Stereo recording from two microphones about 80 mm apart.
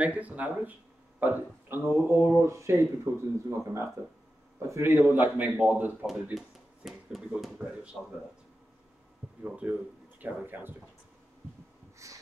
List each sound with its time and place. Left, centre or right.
0.0 s a man's voice: centre; by 4.9 s right
4.9 s a man's voice: right
6.3 s speech: centre
7.5 s speech: centre
9.4 s a man's voice: right
12.0 s snort: right